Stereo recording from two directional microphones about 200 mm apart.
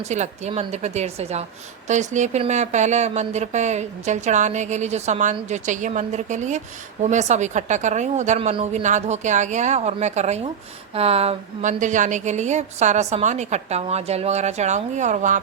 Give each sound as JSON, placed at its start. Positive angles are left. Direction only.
{"t": 0.0, "sound": "a woman's voice", "side_deg": -35}